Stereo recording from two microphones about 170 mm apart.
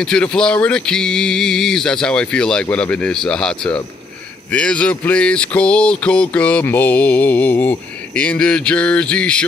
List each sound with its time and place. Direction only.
0.0 s speech: 5° left (ahead or behind)
4.5 s mantra: 5° left (ahead or behind)